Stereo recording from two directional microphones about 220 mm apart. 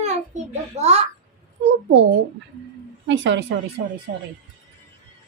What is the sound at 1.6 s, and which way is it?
Speech, 55° right (ahead or behind).